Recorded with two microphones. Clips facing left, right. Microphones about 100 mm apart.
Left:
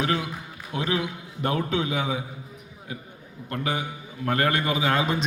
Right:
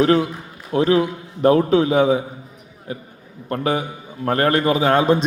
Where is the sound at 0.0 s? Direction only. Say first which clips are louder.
Right 10 dB; 40° right (ahead or behind).